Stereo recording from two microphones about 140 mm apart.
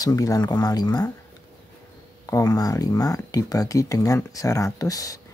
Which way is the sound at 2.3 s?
25° left (ahead or behind).